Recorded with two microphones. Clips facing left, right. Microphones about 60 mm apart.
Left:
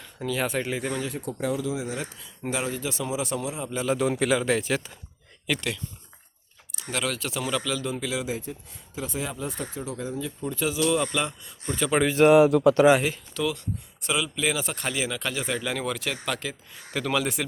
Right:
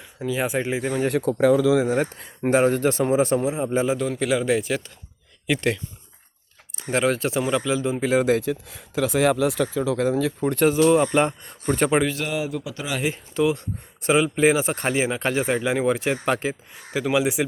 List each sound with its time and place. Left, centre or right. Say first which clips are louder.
0.0 s speech: right 3 dB; centre
1.2 s speech: right 11 dB; right
1.8 s speech: right 10 dB; right
3.9 s a man's voice: right 1 dB; centre
5.5 s speech: right 8 dB; right
6.8 s speech: right 8 dB; right
8.0 s speech: right 10 dB; right
8.3 s speech: right 11 dB; right
10.7 s speech: right 6 dB; right
12.3 s speech: left 11 dB; left
13.1 s speech: right 6 dB; right
16.9 s speech: right 5 dB; centre